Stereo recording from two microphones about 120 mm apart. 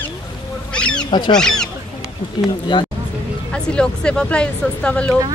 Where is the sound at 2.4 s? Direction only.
40° left (ahead or behind).